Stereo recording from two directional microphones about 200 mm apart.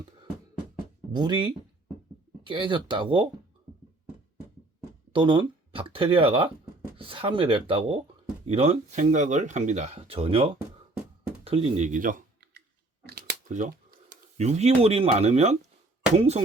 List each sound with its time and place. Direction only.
1.1 s speech: 20° right (ahead or behind)
5.1 s speech: 25° right (ahead or behind)
11.4 s clicking: 30° right (ahead or behind); by 13.2 s 50° right (ahead or behind)
14.3 s speech: 35° right (ahead or behind)